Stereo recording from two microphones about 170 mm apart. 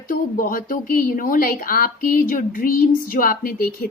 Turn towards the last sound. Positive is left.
turn(degrees=60)  # may be behind; listen again after turning